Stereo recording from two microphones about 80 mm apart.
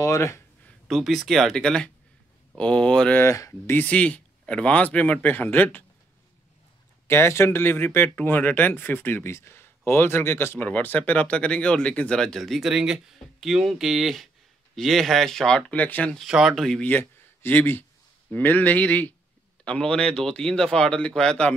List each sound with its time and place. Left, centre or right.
0.0 s speech: left
0.8 s speech: centre
3.2 s speech: left
3.7 s speech: centre
7.1 s speech: left; by 15.6 s centre
15.7 s speech: centre
16.3 s speech: centre
16.8 s speech: left; by 21.5 s centre